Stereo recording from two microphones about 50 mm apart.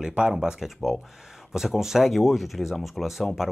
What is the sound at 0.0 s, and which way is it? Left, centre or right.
Speech, centre.